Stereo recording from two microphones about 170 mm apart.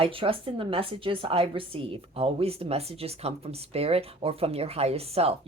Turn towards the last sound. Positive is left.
turn(degrees=-35)  # may be behind; listen again after turning